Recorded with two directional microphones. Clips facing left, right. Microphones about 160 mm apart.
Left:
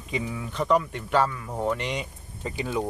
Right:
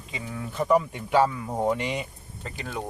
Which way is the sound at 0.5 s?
10° right (ahead or behind).